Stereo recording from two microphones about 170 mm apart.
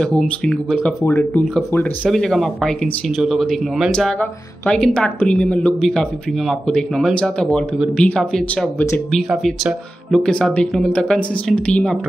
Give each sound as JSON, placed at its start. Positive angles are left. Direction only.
{"t": 0.2, "sound": "speech", "side_deg": 5}